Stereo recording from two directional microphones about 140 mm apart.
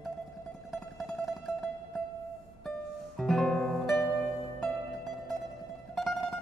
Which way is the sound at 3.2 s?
5° left (ahead or behind).